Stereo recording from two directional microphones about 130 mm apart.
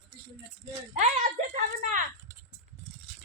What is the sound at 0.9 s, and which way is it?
A child's voice, 80° right.